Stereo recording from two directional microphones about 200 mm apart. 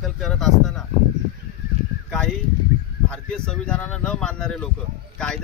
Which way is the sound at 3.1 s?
5° left (ahead or behind).